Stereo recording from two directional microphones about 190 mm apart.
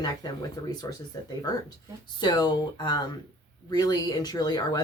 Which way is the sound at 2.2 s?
20° left (ahead or behind).